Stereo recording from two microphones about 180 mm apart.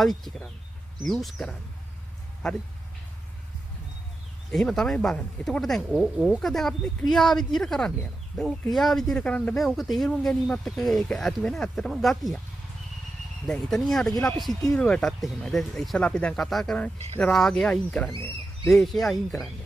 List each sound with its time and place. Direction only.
0.0 s speech: centre (ahead or behind)
4.5 s speech: centre (ahead or behind)
13.5 s speech: centre (ahead or behind)